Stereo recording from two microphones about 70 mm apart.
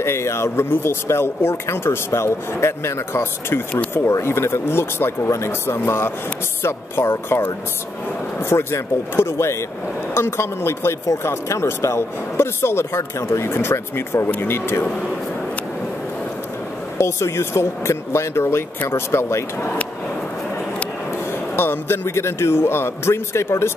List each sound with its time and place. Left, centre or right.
0.0 s speech: left
17.0 s speech: left
21.5 s speech: left